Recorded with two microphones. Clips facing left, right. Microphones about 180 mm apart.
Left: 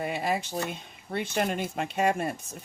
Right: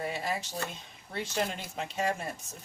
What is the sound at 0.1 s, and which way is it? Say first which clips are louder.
Speech: left 5 dB; 60° left (ahead or behind).